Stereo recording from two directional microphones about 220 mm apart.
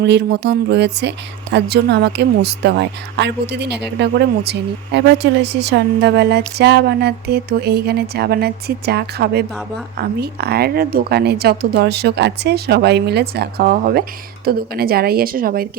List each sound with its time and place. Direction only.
0.0 s speech: 50° right (ahead or behind)